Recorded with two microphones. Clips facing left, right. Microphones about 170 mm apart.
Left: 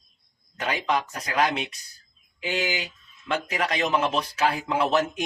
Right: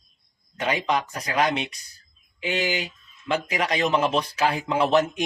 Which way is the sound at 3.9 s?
Centre (ahead or behind).